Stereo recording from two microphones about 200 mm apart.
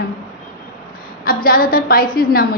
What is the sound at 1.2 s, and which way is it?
A woman's voice, 45° left (ahead or behind).